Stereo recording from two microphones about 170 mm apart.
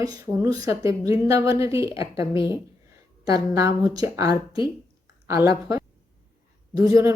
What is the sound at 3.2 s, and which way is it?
Speech, 20° right (ahead or behind).